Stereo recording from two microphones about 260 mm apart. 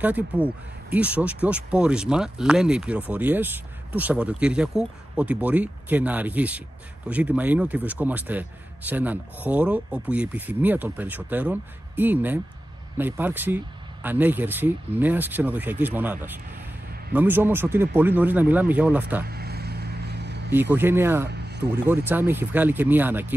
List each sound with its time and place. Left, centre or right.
0.9 s a man's voice: centre
19.2 s vehicle: right
20.7 s a man's voice: centre
21.3 s a sound: right
21.8 s a man's voice: centre